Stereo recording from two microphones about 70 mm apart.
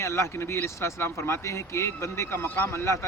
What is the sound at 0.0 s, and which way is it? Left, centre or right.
Speech, left.